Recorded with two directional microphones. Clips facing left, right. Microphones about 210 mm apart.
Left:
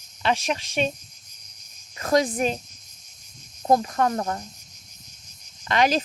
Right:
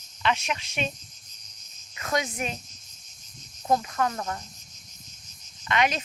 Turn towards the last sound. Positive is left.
turn(degrees=35)  # may be behind; listen again after turning